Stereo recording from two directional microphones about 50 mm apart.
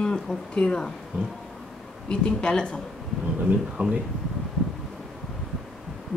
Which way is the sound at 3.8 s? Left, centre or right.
Right.